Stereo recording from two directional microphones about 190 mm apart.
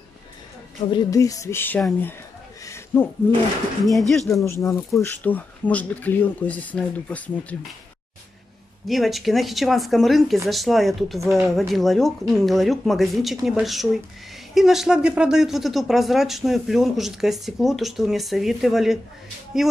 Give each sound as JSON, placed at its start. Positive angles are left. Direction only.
{"t": 0.9, "sound": "speech", "side_deg": 15}
{"t": 2.6, "sound": "a sound", "side_deg": 15}
{"t": 3.8, "sound": "speech", "side_deg": 0}
{"t": 4.3, "sound": "speech", "side_deg": 15}
{"t": 8.8, "sound": "speech", "side_deg": 0}